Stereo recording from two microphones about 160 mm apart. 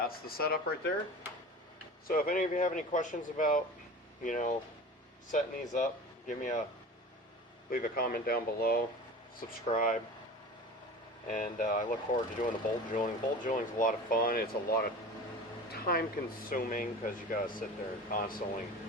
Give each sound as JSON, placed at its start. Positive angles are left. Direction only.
{"t": 0.0, "sound": "speech", "side_deg": 70}
{"t": 2.0, "sound": "speech", "side_deg": 65}
{"t": 7.7, "sound": "speech", "side_deg": 65}
{"t": 9.6, "sound": "speech", "side_deg": 55}
{"t": 11.3, "sound": "speech", "side_deg": 55}